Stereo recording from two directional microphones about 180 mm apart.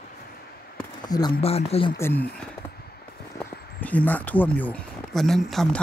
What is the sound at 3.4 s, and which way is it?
Speech, 10° left (ahead or behind).